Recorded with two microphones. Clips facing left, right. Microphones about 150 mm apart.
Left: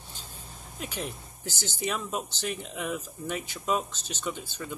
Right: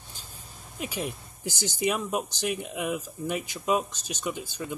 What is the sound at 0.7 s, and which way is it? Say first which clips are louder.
Speech: right 3 dB; 10° right (ahead or behind).